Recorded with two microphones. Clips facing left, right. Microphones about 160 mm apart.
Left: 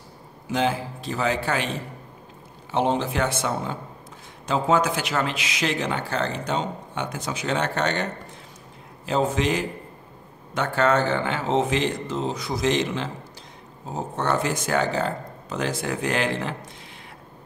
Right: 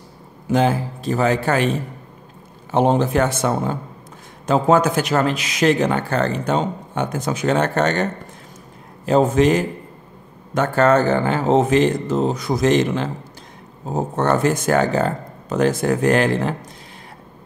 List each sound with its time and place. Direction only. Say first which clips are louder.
0.5 s speech: right 6 dB; 45° right (ahead or behind)
2.7 s speech: right 6 dB; 45° right (ahead or behind)